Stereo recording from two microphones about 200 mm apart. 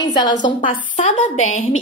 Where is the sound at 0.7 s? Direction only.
35° left (ahead or behind).